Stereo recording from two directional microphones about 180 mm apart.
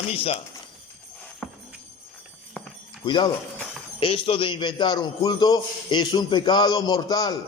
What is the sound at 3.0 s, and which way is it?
A man's voice, 25° left (ahead or behind).